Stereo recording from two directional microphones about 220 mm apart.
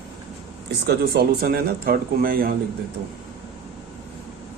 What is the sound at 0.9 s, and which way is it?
Speech, 45° right (ahead or behind).